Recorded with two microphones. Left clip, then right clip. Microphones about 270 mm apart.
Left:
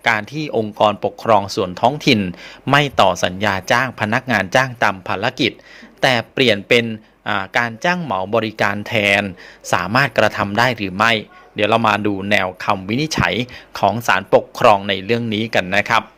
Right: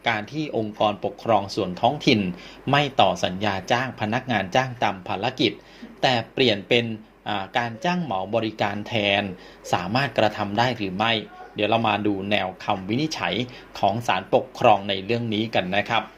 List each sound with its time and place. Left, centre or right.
0.0 s speech: left